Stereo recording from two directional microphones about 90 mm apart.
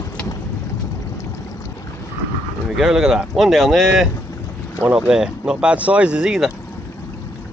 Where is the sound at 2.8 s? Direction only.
5° right (ahead or behind).